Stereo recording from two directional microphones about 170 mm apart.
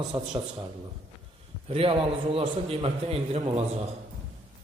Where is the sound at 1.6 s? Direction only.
35° right (ahead or behind).